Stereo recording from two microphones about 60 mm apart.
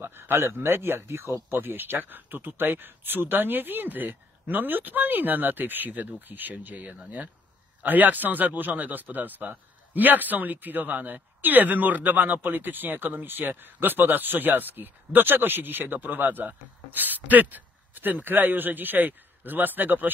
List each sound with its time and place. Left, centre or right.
0.0 s speech: right